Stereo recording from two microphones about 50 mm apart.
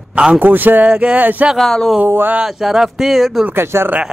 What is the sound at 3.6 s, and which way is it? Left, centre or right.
Speech, right.